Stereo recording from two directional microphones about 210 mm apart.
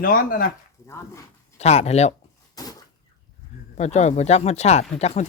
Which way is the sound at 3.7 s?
30° left (ahead or behind).